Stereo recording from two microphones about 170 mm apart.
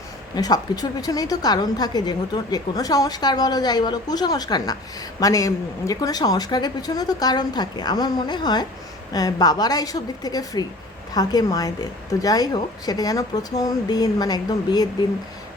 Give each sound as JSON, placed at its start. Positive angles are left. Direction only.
{"t": 0.3, "sound": "a woman's voice", "side_deg": 25}